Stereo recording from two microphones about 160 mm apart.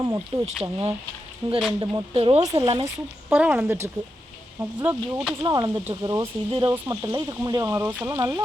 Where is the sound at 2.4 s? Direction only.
25° right (ahead or behind).